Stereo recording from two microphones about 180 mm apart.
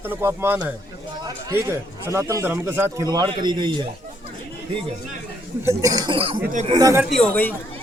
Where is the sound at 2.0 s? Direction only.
15° right (ahead or behind).